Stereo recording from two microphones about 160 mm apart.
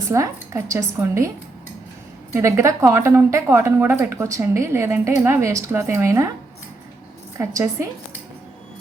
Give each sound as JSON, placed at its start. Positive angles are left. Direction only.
{"t": 0.1, "sound": "a woman's voice", "side_deg": -20}
{"t": 2.3, "sound": "a woman's voice", "side_deg": -15}
{"t": 7.3, "sound": "a woman's voice", "side_deg": -20}